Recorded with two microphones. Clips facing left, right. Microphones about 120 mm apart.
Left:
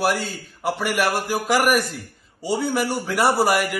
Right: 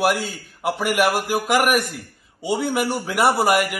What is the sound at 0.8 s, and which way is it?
A man's voice, 60° right (ahead or behind).